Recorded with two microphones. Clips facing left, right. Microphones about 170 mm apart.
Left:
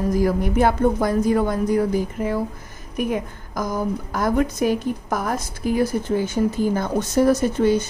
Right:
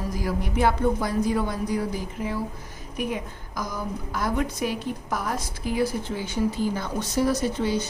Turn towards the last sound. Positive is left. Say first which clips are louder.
# left 7 dB
turn(degrees=50)  # may be behind; listen again after turning